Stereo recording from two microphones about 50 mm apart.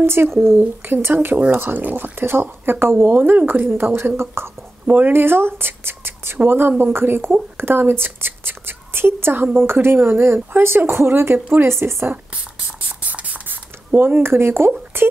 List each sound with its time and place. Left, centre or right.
0.0 s speech: right
4.8 s speech: right
11.6 s speech: right
12.4 s spray: right
13.9 s speech: right